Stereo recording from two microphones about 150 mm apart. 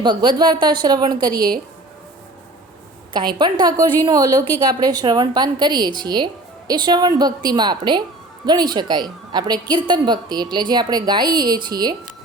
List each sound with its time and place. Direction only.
0.0 s a woman's voice: 30° right (ahead or behind)
3.1 s a woman's voice: 30° right (ahead or behind)